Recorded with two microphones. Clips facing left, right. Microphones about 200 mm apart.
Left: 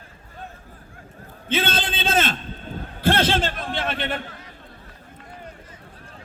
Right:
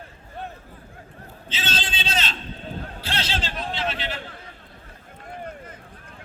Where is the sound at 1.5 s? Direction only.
55° left (ahead or behind).